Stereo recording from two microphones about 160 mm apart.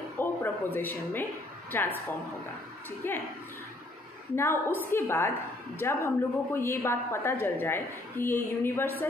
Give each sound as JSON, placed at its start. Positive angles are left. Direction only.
{"t": 0.2, "sound": "a sound", "side_deg": 10}
{"t": 3.0, "sound": "a woman's voice", "side_deg": 15}
{"t": 4.4, "sound": "a woman's voice", "side_deg": 15}